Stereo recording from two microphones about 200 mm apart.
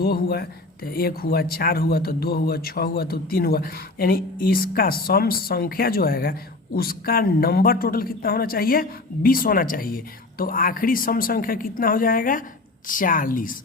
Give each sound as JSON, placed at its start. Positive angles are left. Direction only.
{"t": 0.0, "sound": "speech", "side_deg": 50}